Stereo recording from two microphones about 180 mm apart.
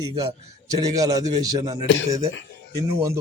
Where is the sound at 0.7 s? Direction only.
20° right (ahead or behind).